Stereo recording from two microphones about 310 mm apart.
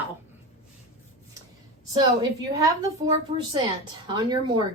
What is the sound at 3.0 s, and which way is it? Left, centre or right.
A woman's voice, centre.